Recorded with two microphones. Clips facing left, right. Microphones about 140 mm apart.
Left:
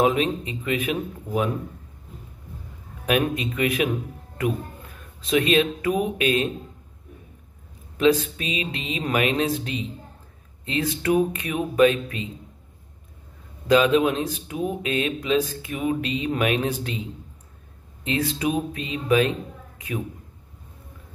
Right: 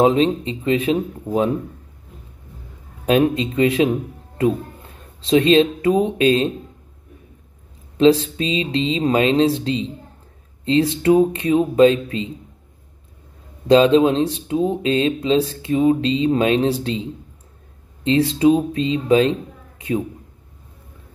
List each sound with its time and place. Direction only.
0.0 s speech: 30° right (ahead or behind)
3.1 s speech: 30° right (ahead or behind)
8.0 s speech: 30° right (ahead or behind)
13.7 s a man's voice: 30° right (ahead or behind)